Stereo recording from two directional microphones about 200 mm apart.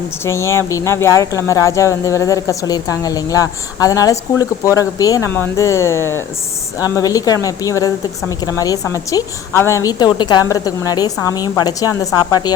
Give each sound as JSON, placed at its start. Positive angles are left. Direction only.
{"t": 0.3, "sound": "speech", "side_deg": 15}